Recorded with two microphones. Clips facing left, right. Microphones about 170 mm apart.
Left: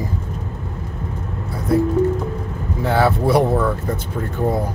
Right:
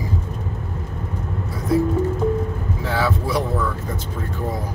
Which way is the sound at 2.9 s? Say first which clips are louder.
Left 6 dB; 60° left (ahead or behind).